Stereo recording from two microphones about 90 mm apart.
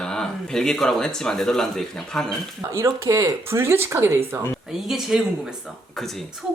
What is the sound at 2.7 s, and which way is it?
Speech, 30° right (ahead or behind).